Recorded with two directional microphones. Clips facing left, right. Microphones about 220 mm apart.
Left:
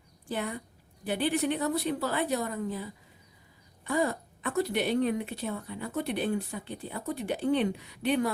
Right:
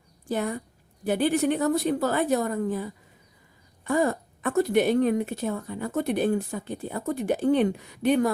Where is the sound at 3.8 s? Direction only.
50° right (ahead or behind).